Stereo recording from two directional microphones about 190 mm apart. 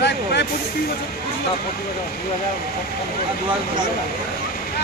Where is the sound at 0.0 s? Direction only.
65° left (ahead or behind).